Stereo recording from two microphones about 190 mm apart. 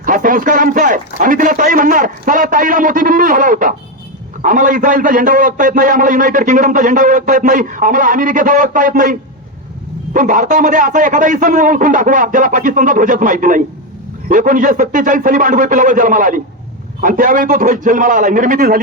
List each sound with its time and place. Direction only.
0.0 s a sound: 45° right (ahead or behind)
4.4 s a man's voice: 45° right (ahead or behind)
10.2 s a man's voice: 45° right (ahead or behind)